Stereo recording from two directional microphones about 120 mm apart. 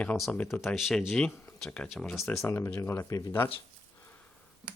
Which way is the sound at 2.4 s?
20° left (ahead or behind).